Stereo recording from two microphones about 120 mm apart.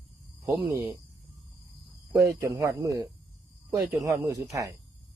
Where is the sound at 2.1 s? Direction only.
25° right (ahead or behind).